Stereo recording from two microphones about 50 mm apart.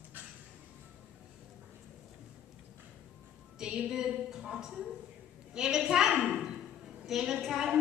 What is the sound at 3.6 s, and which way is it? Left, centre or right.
A woman's voice, centre.